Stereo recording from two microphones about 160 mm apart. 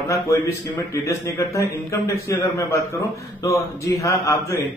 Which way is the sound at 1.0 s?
15° left (ahead or behind).